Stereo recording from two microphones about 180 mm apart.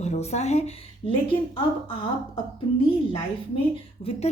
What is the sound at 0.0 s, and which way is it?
A woman's voice, 40° left (ahead or behind).